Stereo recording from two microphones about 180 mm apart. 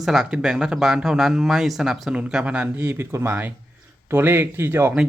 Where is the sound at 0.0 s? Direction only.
Centre (ahead or behind).